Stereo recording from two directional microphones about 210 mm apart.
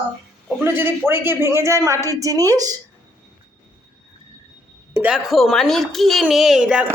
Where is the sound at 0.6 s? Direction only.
10° right (ahead or behind).